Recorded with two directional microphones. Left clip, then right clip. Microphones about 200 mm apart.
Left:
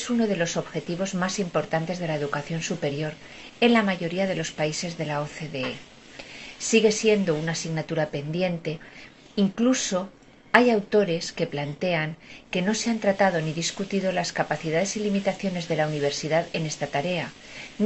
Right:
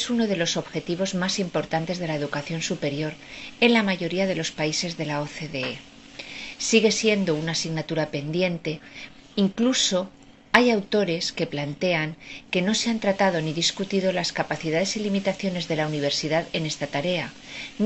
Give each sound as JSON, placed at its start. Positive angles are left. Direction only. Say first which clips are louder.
{"t": 0.0, "sound": "speech", "louder": "right 1 dB", "side_deg": -40}